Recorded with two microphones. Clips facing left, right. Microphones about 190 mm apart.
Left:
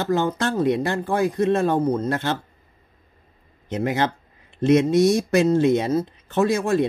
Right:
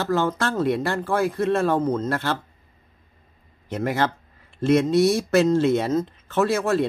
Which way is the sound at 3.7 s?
20° left (ahead or behind).